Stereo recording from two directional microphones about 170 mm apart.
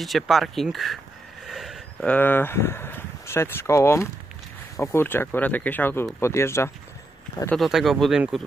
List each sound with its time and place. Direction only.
0.0 s speech: centre (ahead or behind); by 6.7 s 15° left (ahead or behind)
7.5 s speech: centre (ahead or behind)